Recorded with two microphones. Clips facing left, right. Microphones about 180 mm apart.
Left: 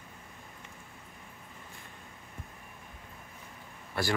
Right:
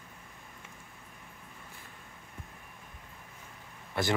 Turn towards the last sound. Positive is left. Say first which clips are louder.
# right 1 dB
turn(degrees=-20)  # may be behind; listen again after turning